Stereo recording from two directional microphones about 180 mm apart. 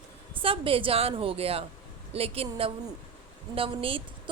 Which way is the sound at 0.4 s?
30° right (ahead or behind).